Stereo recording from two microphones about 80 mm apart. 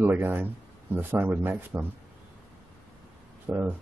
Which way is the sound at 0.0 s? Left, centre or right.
Right.